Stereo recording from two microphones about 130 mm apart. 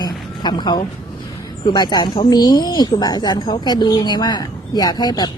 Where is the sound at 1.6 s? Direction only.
35° left (ahead or behind).